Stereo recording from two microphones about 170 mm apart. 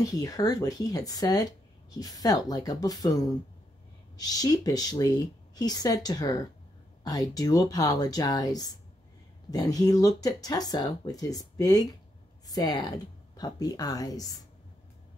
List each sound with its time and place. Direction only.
0.0 s speech: 20° left (ahead or behind)